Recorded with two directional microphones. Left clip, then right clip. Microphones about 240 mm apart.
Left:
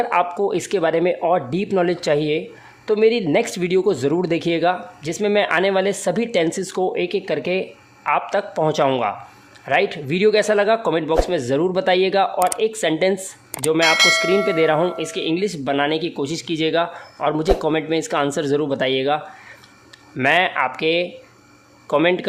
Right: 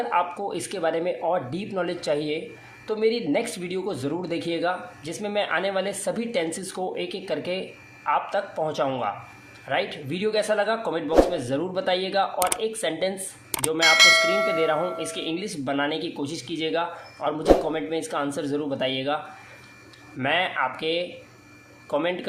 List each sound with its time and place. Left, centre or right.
0.0 s speech: left
13.7 s speech: centre
14.6 s speech: left